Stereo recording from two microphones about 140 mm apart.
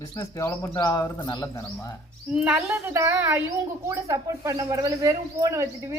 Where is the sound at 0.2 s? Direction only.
20° left (ahead or behind).